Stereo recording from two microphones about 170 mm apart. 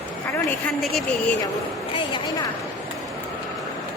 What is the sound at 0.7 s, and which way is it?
Speech, 5° left (ahead or behind).